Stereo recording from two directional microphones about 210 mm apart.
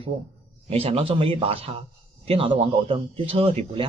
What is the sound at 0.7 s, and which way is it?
A man's voice, 30° right (ahead or behind).